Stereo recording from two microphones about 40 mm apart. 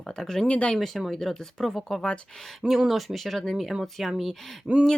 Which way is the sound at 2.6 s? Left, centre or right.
Centre.